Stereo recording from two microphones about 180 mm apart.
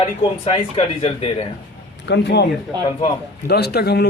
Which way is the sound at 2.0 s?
75° left (ahead or behind).